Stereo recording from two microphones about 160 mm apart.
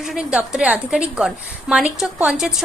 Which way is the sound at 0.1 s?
5° right (ahead or behind).